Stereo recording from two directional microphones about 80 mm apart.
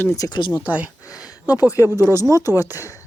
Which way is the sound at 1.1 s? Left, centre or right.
Left.